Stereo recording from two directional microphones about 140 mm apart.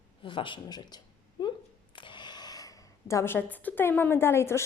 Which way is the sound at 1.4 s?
35° left (ahead or behind).